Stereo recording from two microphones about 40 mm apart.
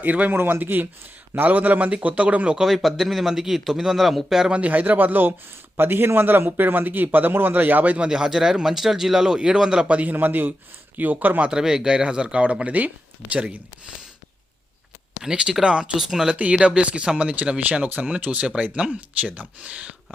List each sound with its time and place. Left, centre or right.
0.0 s a man's voice: right
0.3 s speech: right
1.4 s a man's voice: right
2.6 s a man's voice: centre
4.5 s a man's voice: right
5.7 s speech: right
8.1 s speech: centre
9.8 s a man's voice: right
10.2 s a man's voice: right
11.5 s a man's voice: centre; by 13.6 s right
15.2 s speech: right
16.3 s a man's voice: right
16.6 s a man's voice: right
19.3 s a man's voice: right